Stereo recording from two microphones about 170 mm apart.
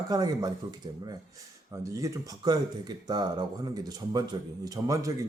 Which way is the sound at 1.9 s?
20° right (ahead or behind).